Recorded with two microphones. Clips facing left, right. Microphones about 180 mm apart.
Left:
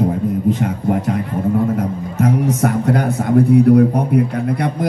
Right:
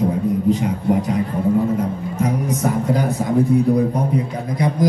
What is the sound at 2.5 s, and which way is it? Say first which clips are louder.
Speech: left 3 dB; 65° left (ahead or behind).